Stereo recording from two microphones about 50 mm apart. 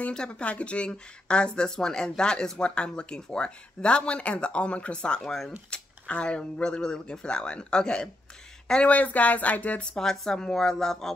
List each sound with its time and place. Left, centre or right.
0.1 s speech: centre
5.2 s speech: centre
5.7 s speech: left
8.9 s speech: left
9.8 s speech: centre